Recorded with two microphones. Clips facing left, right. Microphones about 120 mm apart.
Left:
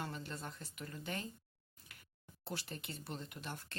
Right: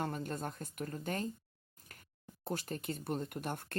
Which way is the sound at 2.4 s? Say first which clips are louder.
Right 7 dB; 45° right (ahead or behind).